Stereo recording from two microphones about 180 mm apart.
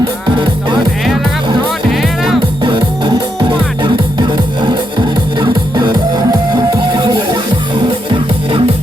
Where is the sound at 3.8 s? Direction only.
25° right (ahead or behind).